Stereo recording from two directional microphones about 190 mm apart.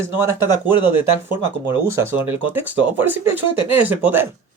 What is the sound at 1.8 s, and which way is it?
Speech, 15° right (ahead or behind).